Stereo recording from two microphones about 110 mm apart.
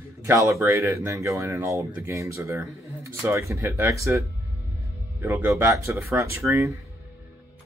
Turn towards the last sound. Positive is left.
turn(degrees=-25)  # may be behind; listen again after turning